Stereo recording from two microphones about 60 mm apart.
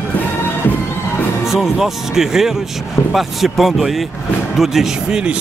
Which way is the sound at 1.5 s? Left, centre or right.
Centre.